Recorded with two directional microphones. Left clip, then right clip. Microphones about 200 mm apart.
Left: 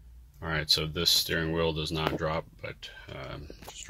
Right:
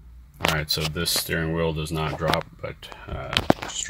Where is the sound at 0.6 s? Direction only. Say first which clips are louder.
Right 1 dB; 10° right (ahead or behind).